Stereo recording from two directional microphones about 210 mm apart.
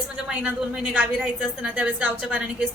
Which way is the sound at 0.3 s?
5° right (ahead or behind).